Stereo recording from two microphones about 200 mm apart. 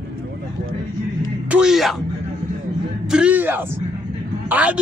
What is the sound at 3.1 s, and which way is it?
A man's voice, 5° right (ahead or behind).